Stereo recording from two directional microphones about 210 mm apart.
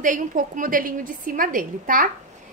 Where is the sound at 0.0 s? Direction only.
40° right (ahead or behind).